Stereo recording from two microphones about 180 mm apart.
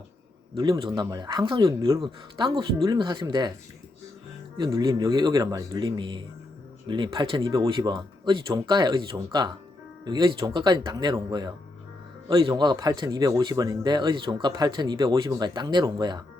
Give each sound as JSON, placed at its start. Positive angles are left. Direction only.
{"t": 0.5, "sound": "speech", "side_deg": -20}
{"t": 4.5, "sound": "speech", "side_deg": -25}